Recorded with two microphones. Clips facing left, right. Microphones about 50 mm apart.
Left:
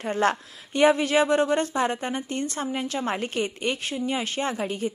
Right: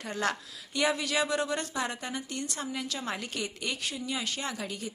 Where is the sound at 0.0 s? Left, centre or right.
Left.